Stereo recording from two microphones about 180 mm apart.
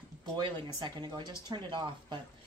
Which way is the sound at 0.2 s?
25° right (ahead or behind).